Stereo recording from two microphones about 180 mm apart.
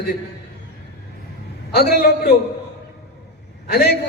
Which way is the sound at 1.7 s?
60° left (ahead or behind).